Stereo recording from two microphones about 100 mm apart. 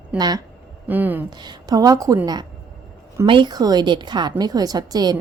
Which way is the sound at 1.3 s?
45° right (ahead or behind).